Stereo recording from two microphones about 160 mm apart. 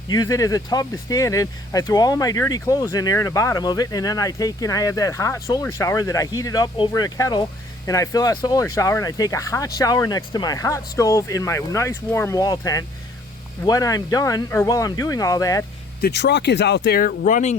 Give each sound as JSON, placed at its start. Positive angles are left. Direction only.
{"t": 0.1, "sound": "speech", "side_deg": 25}
{"t": 16.0, "sound": "speech", "side_deg": 85}